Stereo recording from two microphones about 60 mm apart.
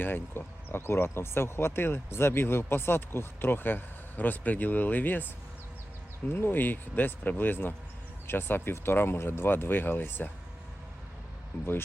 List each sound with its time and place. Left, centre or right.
0.0 s speech: left
6.3 s speech: left